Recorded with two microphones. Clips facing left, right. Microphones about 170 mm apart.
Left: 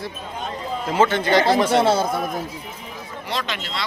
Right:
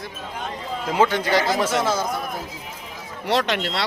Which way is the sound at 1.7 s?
30° left (ahead or behind).